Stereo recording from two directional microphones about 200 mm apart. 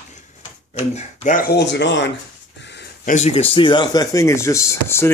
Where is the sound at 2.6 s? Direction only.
60° left (ahead or behind).